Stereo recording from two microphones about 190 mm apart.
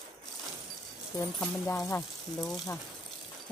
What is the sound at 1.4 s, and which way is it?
Speech, 15° left (ahead or behind).